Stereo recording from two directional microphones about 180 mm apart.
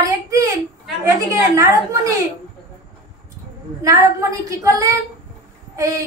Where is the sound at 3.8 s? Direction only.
20° right (ahead or behind).